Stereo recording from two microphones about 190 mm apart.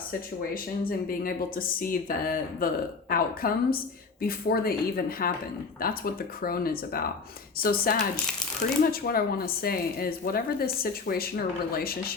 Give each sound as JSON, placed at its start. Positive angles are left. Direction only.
{"t": 0.5, "sound": "speech", "side_deg": 50}